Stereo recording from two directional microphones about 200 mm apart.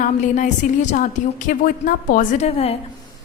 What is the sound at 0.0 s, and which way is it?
A woman's voice, 40° left (ahead or behind).